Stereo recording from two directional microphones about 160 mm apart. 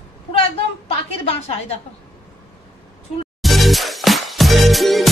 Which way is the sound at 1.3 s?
40° left (ahead or behind).